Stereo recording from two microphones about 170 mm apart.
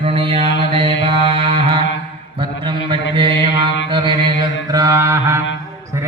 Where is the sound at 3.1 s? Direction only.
30° right (ahead or behind).